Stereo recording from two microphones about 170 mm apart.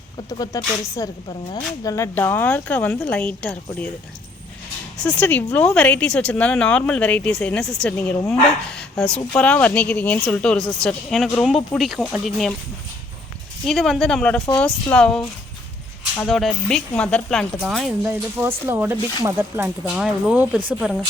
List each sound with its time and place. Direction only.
0.3 s speech: 20° left (ahead or behind)
5.2 s speech: 10° left (ahead or behind)
13.7 s speech: centre (ahead or behind)
16.2 s speech: centre (ahead or behind)
18.0 s speech: 10° right (ahead or behind)
19.9 s speech: 5° right (ahead or behind)